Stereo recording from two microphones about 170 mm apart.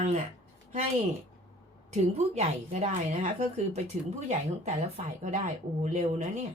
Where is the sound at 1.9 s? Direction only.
40° right (ahead or behind).